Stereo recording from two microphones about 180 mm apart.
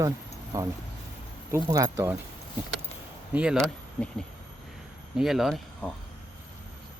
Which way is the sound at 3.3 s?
5° right (ahead or behind).